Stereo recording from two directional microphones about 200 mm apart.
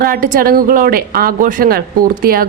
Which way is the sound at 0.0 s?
45° right (ahead or behind).